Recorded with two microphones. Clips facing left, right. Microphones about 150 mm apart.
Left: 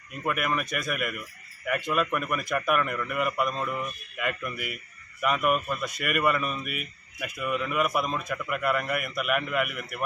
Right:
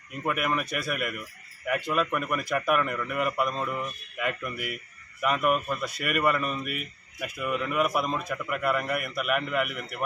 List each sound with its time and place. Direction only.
0.2 s a man's voice: centre (ahead or behind)